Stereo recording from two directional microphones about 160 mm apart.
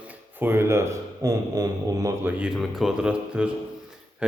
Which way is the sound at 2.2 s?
10° right (ahead or behind).